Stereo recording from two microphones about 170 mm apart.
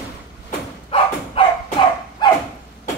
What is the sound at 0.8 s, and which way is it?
Dog, 35° left (ahead or behind).